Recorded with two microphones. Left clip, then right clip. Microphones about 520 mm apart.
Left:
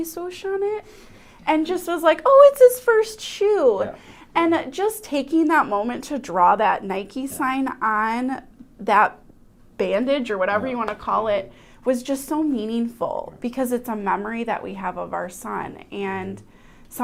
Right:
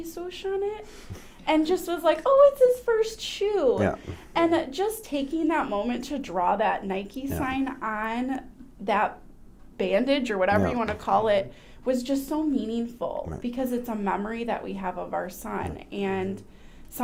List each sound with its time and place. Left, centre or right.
0.1 s a woman's voice: left
10.1 s speech: centre
11.9 s a woman's voice: left